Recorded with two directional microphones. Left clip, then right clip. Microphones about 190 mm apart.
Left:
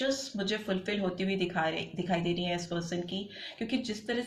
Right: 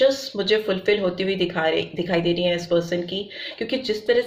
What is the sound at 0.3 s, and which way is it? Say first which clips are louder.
A woman's voice: right 12 dB; 30° right (ahead or behind).